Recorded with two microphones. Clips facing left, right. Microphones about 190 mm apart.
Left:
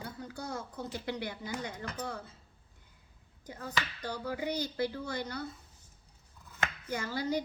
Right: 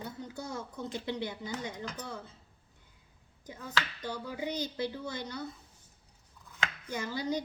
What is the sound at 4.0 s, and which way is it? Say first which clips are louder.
Speech: left 1 dB; 20° right (ahead or behind).